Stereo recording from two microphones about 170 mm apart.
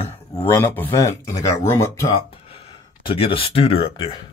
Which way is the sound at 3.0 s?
30° left (ahead or behind).